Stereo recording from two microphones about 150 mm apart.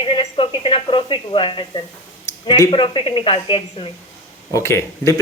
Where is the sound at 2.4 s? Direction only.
20° left (ahead or behind).